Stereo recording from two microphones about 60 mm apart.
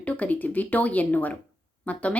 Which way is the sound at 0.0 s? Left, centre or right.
Left.